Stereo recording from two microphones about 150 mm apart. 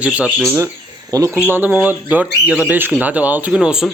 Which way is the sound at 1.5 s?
10° right (ahead or behind).